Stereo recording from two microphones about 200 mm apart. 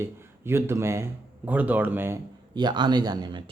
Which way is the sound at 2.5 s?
20° right (ahead or behind).